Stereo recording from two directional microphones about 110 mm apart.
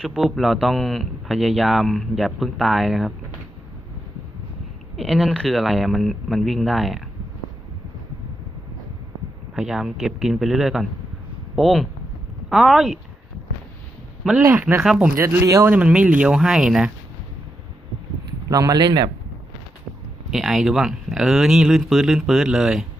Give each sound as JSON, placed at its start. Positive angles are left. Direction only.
{"t": 0.0, "sound": "a man's voice", "side_deg": 0}
{"t": 4.9, "sound": "a man's voice", "side_deg": 0}
{"t": 9.6, "sound": "a man's voice", "side_deg": -5}
{"t": 14.4, "sound": "speech", "side_deg": -20}
{"t": 15.1, "sound": "speech", "side_deg": -20}
{"t": 15.7, "sound": "speech", "side_deg": -10}
{"t": 18.4, "sound": "speech", "side_deg": -30}
{"t": 20.3, "sound": "a man's voice", "side_deg": 0}